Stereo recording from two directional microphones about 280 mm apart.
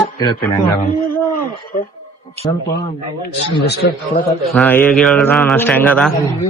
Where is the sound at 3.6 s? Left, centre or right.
Left.